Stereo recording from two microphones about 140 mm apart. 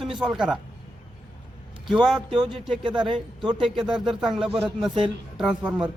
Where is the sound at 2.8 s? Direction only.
35° right (ahead or behind).